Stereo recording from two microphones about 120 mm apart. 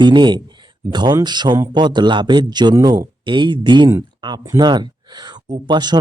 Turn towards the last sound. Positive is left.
turn(degrees=-35)  # may be behind; listen again after turning